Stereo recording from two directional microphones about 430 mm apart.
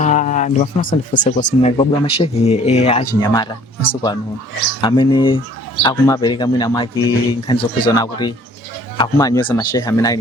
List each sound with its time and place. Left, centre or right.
0.0 s speech: centre